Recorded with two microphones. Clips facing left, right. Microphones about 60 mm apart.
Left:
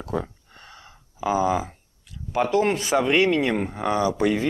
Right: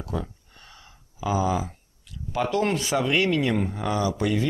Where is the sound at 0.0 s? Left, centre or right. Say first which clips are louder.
Left 3 dB; left.